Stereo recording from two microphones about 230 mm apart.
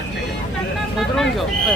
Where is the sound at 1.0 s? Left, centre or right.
Centre.